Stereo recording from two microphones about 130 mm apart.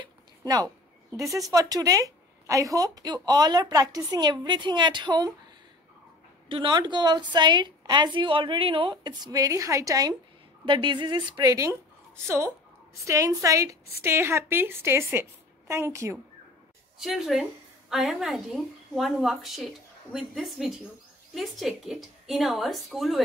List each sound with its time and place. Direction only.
0.4 s a woman's voice: 30° right (ahead or behind)
6.5 s speech: 35° right (ahead or behind)
12.3 s a woman's voice: 25° right (ahead or behind)
17.0 s a woman's voice: centre (ahead or behind)